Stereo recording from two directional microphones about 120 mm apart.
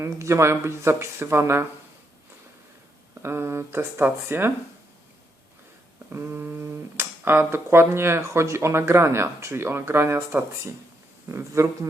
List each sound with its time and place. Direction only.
0.0 s speech: 25° right (ahead or behind)
3.2 s speech: 20° right (ahead or behind)
6.1 s speech: 20° right (ahead or behind)